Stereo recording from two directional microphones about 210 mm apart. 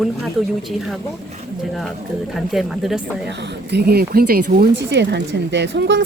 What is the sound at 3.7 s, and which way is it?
Speech, 50° right (ahead or behind).